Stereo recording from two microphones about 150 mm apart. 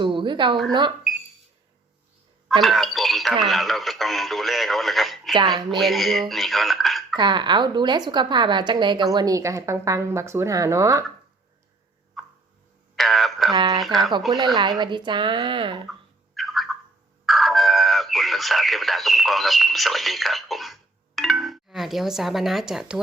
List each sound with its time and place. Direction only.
0.0 s a woman's voice: 35° right (ahead or behind)
2.5 s speech: centre (ahead or behind)
7.2 s a woman's voice: 30° right (ahead or behind)
12.2 s a sound: centre (ahead or behind)
13.5 s speech: 25° right (ahead or behind)
13.7 s speech: centre (ahead or behind)
14.8 s a woman's voice: 30° right (ahead or behind)
15.9 s a sound: centre (ahead or behind)
17.2 s speech: centre (ahead or behind)